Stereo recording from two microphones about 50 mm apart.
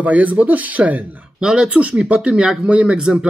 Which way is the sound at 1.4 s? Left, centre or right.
Centre.